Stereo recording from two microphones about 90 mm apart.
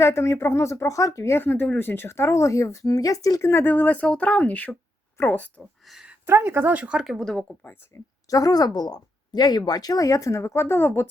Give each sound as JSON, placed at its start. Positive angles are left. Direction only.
{"t": 0.0, "sound": "speech", "side_deg": 30}
{"t": 3.5, "sound": "speech", "side_deg": 20}
{"t": 5.8, "sound": "speech", "side_deg": -5}
{"t": 6.3, "sound": "speech", "side_deg": -20}
{"t": 7.9, "sound": "speech", "side_deg": 30}
{"t": 8.3, "sound": "speech", "side_deg": 40}